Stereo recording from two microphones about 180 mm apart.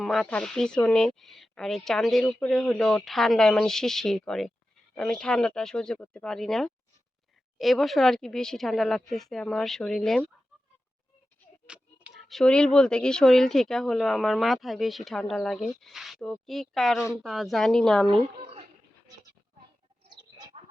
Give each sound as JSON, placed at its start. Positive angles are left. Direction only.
{"t": 0.0, "sound": "speech", "side_deg": 0}
{"t": 11.7, "sound": "speech", "side_deg": -5}
{"t": 18.1, "sound": "speech", "side_deg": -30}
{"t": 20.1, "sound": "bird", "side_deg": -25}